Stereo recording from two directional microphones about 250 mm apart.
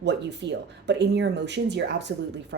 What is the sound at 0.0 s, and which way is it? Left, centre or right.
Speech, right.